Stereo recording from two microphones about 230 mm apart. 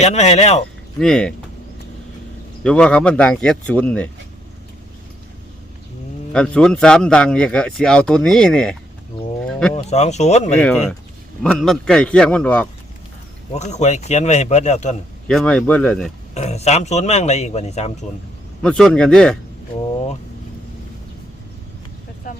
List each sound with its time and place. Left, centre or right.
0.0 s a man's voice: left
0.9 s speech: centre
2.6 s speech: centre
6.3 s speech: centre
9.5 s a sound: centre
9.7 s a man's voice: left
10.6 s speech: centre
13.5 s a man's voice: left
15.3 s speech: centre
16.3 s a man's voice: left
18.6 s speech: centre
22.3 s vehicle: left